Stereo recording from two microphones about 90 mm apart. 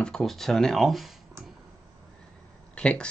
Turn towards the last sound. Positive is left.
turn(degrees=10)  # may be behind; listen again after turning